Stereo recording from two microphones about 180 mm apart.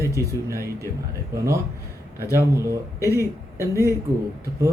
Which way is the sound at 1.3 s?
15° right (ahead or behind).